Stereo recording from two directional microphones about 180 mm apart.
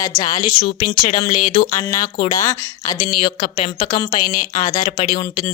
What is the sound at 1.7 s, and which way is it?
A woman's voice, 15° left (ahead or behind).